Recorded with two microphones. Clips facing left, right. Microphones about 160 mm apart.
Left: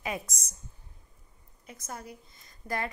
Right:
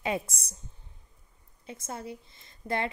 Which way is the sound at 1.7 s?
25° right (ahead or behind).